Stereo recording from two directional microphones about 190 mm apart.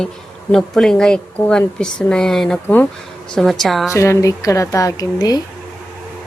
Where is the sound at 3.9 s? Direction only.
15° left (ahead or behind).